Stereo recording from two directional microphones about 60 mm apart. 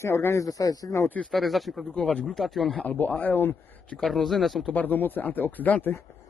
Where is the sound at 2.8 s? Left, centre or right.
Left.